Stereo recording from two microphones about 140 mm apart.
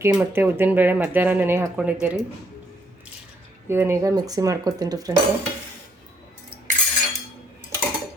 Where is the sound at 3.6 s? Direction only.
15° right (ahead or behind).